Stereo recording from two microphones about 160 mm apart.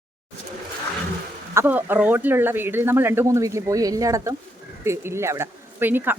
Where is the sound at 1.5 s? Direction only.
10° right (ahead or behind).